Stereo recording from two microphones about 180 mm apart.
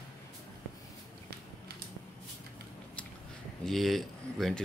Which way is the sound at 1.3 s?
60° right (ahead or behind).